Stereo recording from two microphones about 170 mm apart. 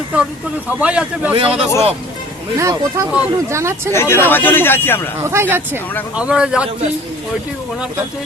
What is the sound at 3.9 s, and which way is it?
A man's voice, 15° left (ahead or behind).